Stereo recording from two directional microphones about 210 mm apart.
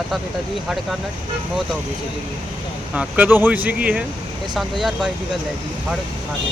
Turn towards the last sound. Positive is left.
turn(degrees=0)  # may be behind; listen again after turning